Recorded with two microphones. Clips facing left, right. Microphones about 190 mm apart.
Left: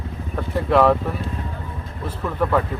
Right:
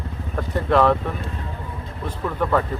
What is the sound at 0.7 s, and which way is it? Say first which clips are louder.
Speech: left 1 dB; 5° left (ahead or behind).